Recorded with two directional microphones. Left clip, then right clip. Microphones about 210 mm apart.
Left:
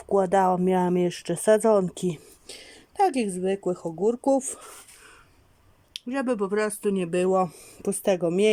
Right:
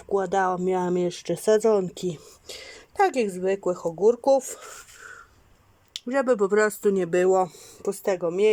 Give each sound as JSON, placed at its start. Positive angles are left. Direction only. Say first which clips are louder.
{"t": 0.0, "sound": "speech", "louder": "left 2 dB", "side_deg": 10}
{"t": 5.9, "sound": "speech", "louder": "right 5 dB", "side_deg": 0}